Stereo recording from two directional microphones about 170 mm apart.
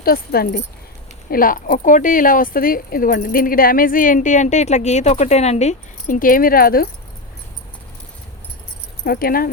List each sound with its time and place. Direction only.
0.0 s speech: 60° left (ahead or behind)
1.3 s speech: 55° left (ahead or behind)
9.0 s speech: 60° left (ahead or behind)